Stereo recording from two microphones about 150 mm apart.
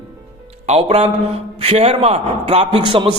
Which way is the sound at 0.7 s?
40° right (ahead or behind).